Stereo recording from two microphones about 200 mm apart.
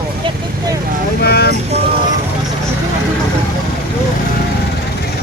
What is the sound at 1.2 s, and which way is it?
Speech, 50° left (ahead or behind).